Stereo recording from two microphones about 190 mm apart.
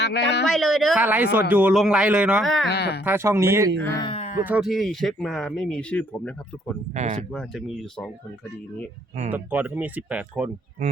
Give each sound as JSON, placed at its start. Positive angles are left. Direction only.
{"t": 0.0, "sound": "speech", "side_deg": 65}
{"t": 0.4, "sound": "speech", "side_deg": 0}
{"t": 2.6, "sound": "speech", "side_deg": 60}
{"t": 3.0, "sound": "speech", "side_deg": -10}
{"t": 4.0, "sound": "speech", "side_deg": 30}
{"t": 4.4, "sound": "speech", "side_deg": -5}
{"t": 6.9, "sound": "speech", "side_deg": -35}
{"t": 7.3, "sound": "speech", "side_deg": 0}
{"t": 9.3, "sound": "speech", "side_deg": -10}
{"t": 10.8, "sound": "speech", "side_deg": -35}